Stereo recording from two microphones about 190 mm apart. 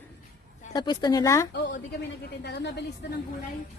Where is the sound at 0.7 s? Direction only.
20° left (ahead or behind).